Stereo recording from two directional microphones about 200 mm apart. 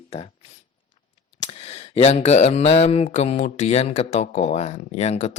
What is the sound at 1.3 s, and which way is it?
Speech, 35° left (ahead or behind).